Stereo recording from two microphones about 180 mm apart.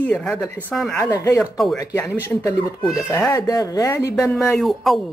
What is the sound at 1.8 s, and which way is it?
A woman's voice, 15° left (ahead or behind).